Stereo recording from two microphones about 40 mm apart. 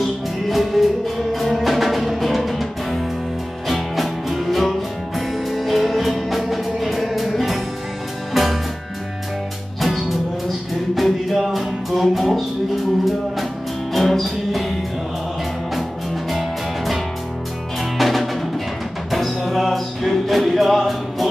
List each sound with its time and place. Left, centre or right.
0.0 s music: centre
9.8 s music: centre
13.9 s music: centre
16.3 s music: centre